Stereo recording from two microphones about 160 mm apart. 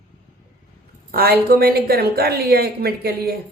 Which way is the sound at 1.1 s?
70° right (ahead or behind).